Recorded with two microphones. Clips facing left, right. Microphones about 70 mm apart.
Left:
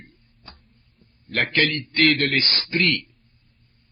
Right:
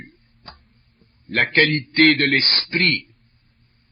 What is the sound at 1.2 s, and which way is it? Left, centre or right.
A man's voice, right.